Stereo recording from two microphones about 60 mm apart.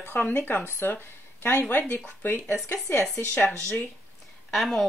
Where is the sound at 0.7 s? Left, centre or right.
Left.